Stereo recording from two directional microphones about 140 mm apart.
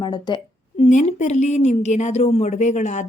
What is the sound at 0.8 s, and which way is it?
Speech, 55° left (ahead or behind).